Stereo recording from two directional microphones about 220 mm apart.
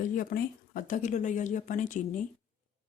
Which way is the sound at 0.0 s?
40° left (ahead or behind).